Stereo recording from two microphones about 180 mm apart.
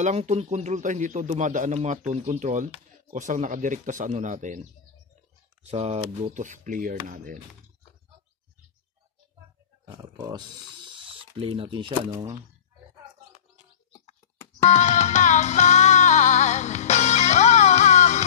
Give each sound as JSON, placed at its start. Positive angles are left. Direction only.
{"t": 0.0, "sound": "speech", "side_deg": -40}
{"t": 5.7, "sound": "speech", "side_deg": -35}
{"t": 10.1, "sound": "speech", "side_deg": -20}
{"t": 14.6, "sound": "music", "side_deg": 40}